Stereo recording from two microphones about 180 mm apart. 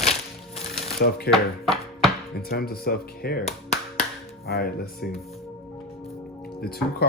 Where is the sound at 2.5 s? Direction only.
60° left (ahead or behind).